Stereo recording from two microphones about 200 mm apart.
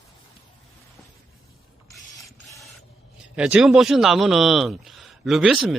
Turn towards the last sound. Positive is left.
turn(degrees=-5)  # may be behind; listen again after turning